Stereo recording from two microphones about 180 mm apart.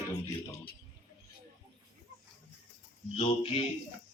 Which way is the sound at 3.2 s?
30° left (ahead or behind).